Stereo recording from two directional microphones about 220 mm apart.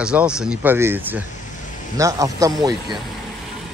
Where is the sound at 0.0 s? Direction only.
5° right (ahead or behind).